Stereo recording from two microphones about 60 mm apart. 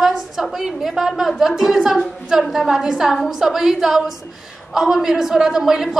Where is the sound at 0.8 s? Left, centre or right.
Centre.